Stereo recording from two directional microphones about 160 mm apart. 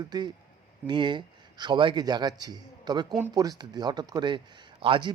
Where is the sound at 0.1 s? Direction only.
25° right (ahead or behind).